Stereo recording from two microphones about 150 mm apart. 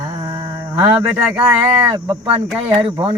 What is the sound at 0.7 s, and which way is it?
Speech, 10° right (ahead or behind).